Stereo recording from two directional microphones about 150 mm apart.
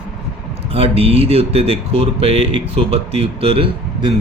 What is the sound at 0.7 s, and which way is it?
Speech, 40° right (ahead or behind).